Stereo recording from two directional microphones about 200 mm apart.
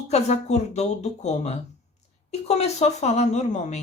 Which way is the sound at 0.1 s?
35° left (ahead or behind).